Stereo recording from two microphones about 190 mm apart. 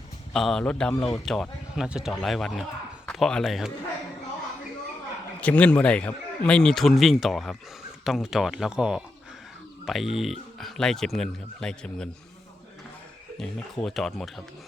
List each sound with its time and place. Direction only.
0.3 s speech: 5° left (ahead or behind)
5.4 s speech: 5° left (ahead or behind)
13.4 s speech: centre (ahead or behind)